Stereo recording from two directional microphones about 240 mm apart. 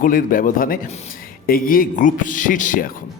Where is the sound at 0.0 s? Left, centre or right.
Left.